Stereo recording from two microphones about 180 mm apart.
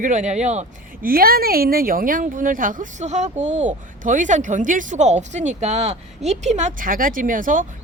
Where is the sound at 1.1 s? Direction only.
55° right (ahead or behind).